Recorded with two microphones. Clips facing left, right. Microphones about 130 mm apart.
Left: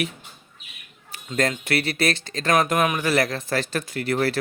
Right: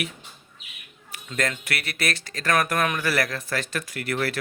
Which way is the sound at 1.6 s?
30° left (ahead or behind).